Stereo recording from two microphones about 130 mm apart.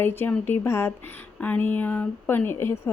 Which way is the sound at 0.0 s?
15° left (ahead or behind).